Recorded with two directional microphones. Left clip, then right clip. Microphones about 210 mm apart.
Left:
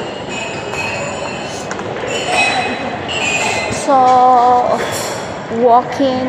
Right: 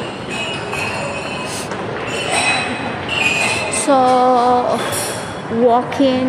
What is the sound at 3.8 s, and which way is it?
Music, 30° right (ahead or behind).